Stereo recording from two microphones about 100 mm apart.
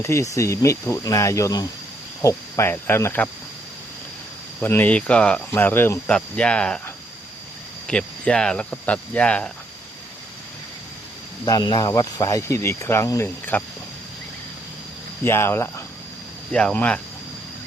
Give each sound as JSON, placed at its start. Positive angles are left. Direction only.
{"t": 0.0, "sound": "speech", "side_deg": 30}
{"t": 2.2, "sound": "cricket", "side_deg": 25}
{"t": 4.6, "sound": "speech", "side_deg": 20}
{"t": 5.5, "sound": "cricket", "side_deg": 20}
{"t": 6.1, "sound": "speech", "side_deg": 10}
{"t": 7.9, "sound": "speech", "side_deg": 10}
{"t": 11.4, "sound": "speech", "side_deg": 45}
{"t": 15.2, "sound": "cricket", "side_deg": 25}
{"t": 16.5, "sound": "speech", "side_deg": 10}